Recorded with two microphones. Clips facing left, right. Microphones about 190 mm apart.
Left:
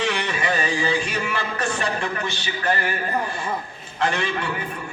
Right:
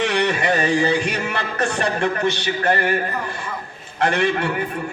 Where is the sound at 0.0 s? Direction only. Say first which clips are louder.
Right 5 dB; 65° right (ahead or behind).